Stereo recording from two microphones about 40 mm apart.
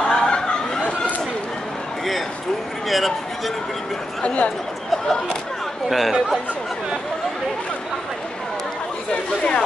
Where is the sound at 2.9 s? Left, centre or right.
Centre.